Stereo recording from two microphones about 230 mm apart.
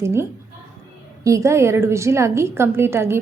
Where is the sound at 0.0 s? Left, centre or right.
Centre.